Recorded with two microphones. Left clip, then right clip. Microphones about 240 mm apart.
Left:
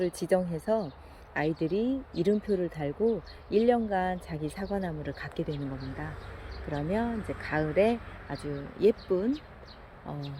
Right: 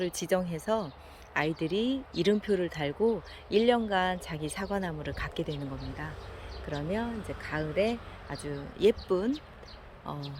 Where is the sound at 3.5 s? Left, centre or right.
Centre.